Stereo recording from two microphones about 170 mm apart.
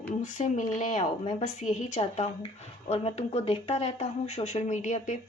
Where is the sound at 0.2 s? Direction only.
45° left (ahead or behind).